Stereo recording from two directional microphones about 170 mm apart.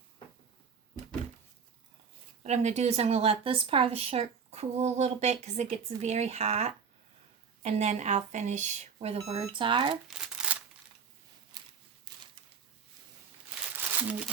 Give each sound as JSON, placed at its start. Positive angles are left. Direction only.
{"t": 2.4, "sound": "a woman's voice", "side_deg": -40}
{"t": 9.9, "sound": "crumpling", "side_deg": -5}
{"t": 12.1, "sound": "a sound", "side_deg": -25}
{"t": 13.7, "sound": "crumpling", "side_deg": -10}